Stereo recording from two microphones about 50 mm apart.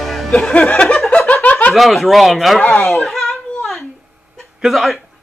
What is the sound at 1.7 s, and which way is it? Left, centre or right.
Speech, centre.